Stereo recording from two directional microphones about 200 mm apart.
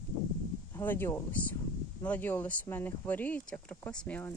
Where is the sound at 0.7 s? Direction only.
10° left (ahead or behind).